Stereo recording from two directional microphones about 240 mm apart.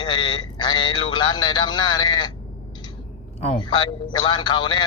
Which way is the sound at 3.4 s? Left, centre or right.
Centre.